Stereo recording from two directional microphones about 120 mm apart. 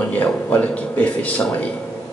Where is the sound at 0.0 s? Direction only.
10° left (ahead or behind).